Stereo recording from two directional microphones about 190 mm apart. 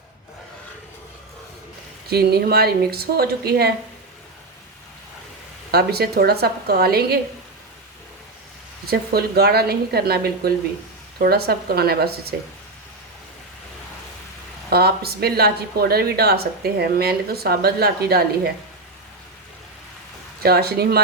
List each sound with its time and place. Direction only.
2.0 s speech: 55° right (ahead or behind)
5.7 s speech: 55° right (ahead or behind)
8.9 s speech: 55° right (ahead or behind)
14.7 s speech: 55° right (ahead or behind)
20.4 s speech: 55° right (ahead or behind)